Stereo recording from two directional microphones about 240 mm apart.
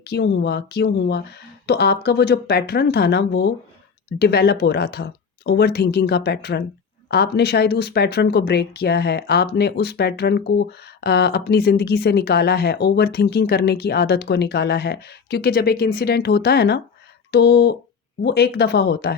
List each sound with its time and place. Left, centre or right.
0.0 s speech: left